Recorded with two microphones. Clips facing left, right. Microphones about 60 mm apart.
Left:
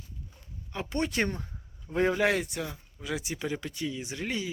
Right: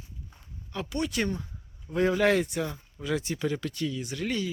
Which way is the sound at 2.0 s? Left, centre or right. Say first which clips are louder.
Right 4 dB; centre.